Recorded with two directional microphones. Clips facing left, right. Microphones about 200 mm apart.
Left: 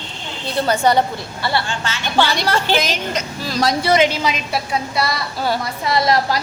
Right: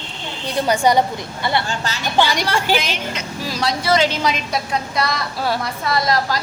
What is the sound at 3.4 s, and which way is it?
Speech, 10° right (ahead or behind).